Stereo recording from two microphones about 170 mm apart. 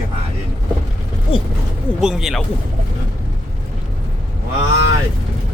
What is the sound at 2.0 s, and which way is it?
Speech, 5° right (ahead or behind).